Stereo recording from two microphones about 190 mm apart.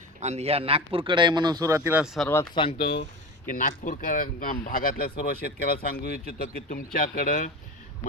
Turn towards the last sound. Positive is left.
turn(degrees=45)  # may be behind; listen again after turning